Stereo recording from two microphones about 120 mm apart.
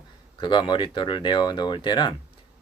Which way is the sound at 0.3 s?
40° left (ahead or behind).